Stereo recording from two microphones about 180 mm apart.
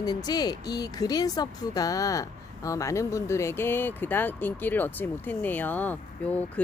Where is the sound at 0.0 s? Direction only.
20° left (ahead or behind).